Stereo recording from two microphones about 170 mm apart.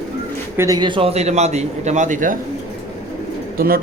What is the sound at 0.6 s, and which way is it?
A man's voice, 25° right (ahead or behind).